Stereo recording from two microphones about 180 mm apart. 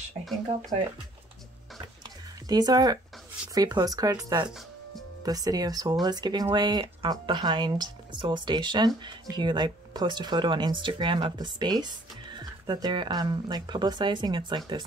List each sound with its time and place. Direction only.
0.2 s speech: centre (ahead or behind)
2.0 s a sound: 20° right (ahead or behind)
3.5 s speech: 20° right (ahead or behind)